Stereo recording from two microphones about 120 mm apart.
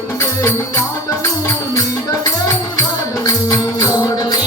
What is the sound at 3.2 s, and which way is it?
Music, 30° left (ahead or behind).